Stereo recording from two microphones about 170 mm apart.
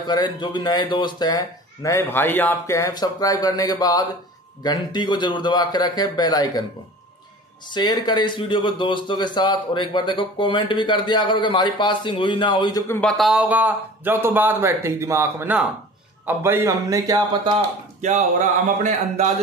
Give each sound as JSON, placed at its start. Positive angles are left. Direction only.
{"t": 0.1, "sound": "a man's voice", "side_deg": 25}
{"t": 7.7, "sound": "a man's voice", "side_deg": 25}
{"t": 12.8, "sound": "a man's voice", "side_deg": 15}
{"t": 13.2, "sound": "a man's voice", "side_deg": -5}
{"t": 18.0, "sound": "speech", "side_deg": -45}